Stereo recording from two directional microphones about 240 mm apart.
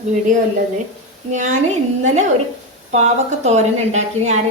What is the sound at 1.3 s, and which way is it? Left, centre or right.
Speech, right.